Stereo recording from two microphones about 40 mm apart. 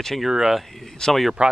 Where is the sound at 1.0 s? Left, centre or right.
Centre.